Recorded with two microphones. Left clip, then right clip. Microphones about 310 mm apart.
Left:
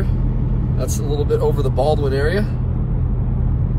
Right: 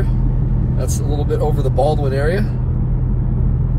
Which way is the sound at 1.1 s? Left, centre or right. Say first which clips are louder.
Left 2 dB; centre.